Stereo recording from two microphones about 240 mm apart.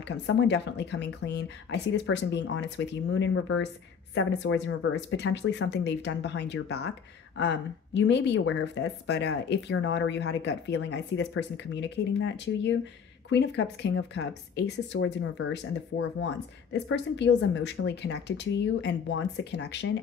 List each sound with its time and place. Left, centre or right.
0.3 s a woman's voice: left